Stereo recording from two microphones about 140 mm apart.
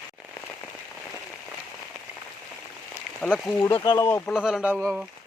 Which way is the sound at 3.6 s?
20° left (ahead or behind).